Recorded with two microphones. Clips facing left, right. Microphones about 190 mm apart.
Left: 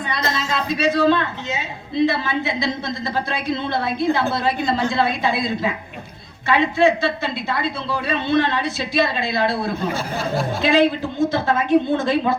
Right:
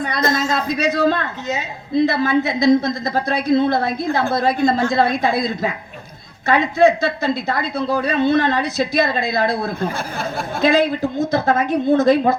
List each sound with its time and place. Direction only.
0.1 s a woman's voice: 45° right (ahead or behind)
6.5 s a woman's voice: 40° right (ahead or behind)
10.2 s speech: 55° right (ahead or behind)
10.7 s a woman's voice: 40° right (ahead or behind)